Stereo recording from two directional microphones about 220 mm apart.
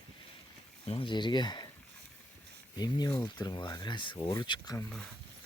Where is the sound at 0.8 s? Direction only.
20° left (ahead or behind).